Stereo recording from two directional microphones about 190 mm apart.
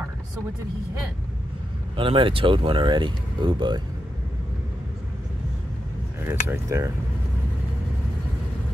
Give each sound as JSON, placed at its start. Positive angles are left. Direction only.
{"t": 2.0, "sound": "speech", "side_deg": -25}
{"t": 6.2, "sound": "speech", "side_deg": -15}